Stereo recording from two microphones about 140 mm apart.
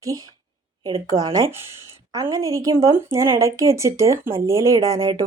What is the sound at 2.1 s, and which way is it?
A woman's voice, 25° right (ahead or behind).